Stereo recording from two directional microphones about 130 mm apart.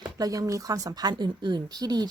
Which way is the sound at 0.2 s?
25° right (ahead or behind).